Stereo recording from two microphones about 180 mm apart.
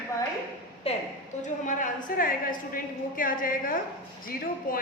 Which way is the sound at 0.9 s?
35° left (ahead or behind).